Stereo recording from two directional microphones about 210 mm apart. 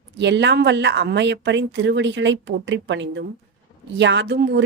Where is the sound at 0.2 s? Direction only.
55° right (ahead or behind).